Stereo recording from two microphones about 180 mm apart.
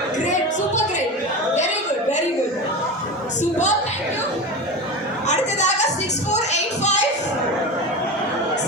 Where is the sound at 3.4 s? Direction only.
40° left (ahead or behind).